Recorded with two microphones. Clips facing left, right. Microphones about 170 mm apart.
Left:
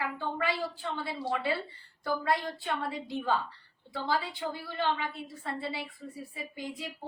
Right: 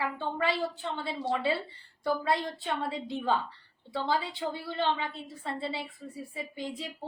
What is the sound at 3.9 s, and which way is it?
A woman's voice, 25° right (ahead or behind).